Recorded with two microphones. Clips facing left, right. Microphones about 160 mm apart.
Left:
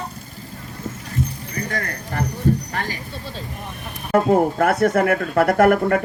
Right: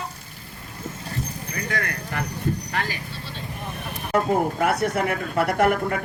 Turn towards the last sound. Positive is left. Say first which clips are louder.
# left 5 dB
turn(degrees=50)  # may be behind; listen again after turning